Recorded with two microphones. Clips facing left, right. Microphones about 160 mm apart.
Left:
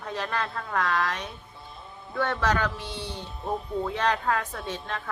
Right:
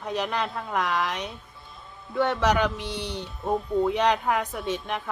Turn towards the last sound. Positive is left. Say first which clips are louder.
# right 4 dB
turn(degrees=-15)  # may be behind; listen again after turning